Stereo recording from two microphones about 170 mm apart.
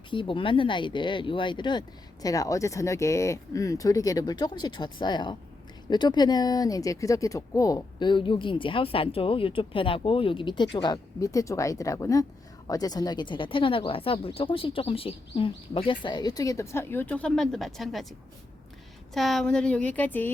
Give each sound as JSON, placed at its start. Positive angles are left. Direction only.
{"t": 0.1, "sound": "speech", "side_deg": 30}
{"t": 19.1, "sound": "a woman's voice", "side_deg": 0}